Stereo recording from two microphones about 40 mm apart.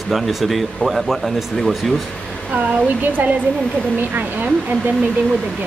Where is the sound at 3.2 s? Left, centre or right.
Right.